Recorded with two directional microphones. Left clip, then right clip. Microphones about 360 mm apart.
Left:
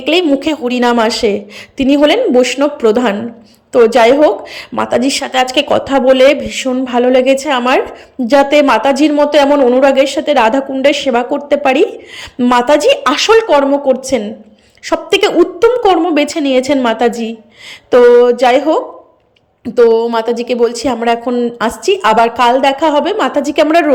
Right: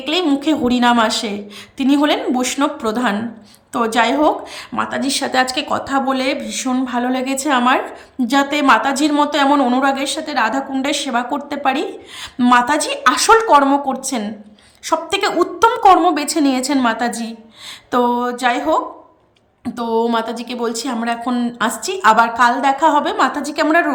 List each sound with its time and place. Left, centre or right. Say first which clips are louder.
0.0 s a woman's voice: left 6 dB; centre